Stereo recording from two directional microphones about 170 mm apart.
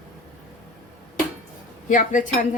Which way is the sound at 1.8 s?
50° left (ahead or behind).